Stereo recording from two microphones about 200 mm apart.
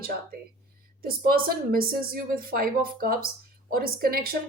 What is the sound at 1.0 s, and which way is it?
Speech, 50° right (ahead or behind).